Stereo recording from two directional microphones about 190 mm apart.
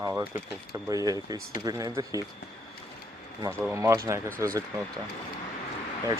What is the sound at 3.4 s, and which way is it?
Speech, 15° right (ahead or behind).